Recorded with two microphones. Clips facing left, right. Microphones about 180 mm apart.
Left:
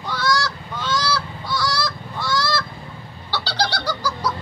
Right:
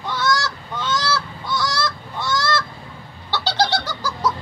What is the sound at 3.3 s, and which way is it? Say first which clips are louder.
Bird: right 4 dB; 25° right (ahead or behind).